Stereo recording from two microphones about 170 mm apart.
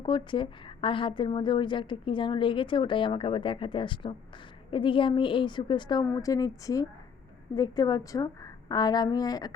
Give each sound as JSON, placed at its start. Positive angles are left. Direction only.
{"t": 0.0, "sound": "a woman's voice", "side_deg": 30}